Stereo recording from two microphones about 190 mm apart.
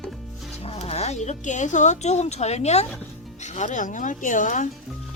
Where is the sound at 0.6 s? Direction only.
30° left (ahead or behind).